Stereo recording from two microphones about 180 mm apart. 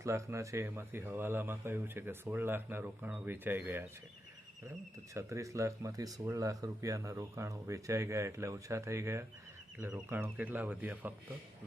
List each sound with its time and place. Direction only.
0.0 s speech: 15° right (ahead or behind)
5.1 s speech: 15° right (ahead or behind)